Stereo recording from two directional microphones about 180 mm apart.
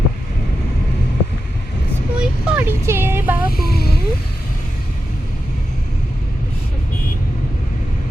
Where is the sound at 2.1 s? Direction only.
5° right (ahead or behind).